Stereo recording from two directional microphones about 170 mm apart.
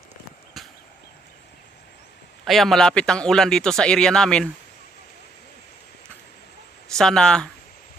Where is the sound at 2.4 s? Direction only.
Centre (ahead or behind).